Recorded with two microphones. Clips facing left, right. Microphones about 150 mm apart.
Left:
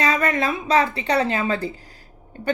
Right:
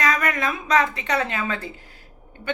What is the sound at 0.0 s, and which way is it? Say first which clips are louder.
A woman's voice: left 2 dB; 30° left (ahead or behind).